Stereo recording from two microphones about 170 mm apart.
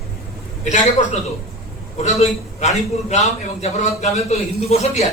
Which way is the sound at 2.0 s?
40° left (ahead or behind).